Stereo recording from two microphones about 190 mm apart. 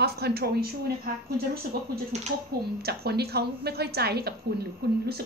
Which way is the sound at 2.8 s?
55° right (ahead or behind).